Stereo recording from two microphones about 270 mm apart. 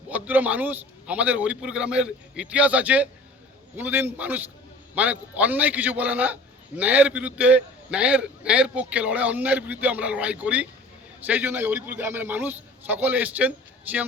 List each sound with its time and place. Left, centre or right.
0.1 s a man's voice: centre